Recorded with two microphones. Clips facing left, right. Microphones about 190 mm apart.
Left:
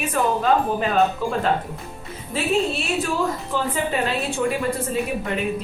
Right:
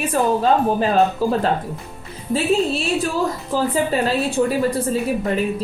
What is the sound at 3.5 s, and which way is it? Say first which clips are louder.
Speech: right 4 dB; 35° right (ahead or behind).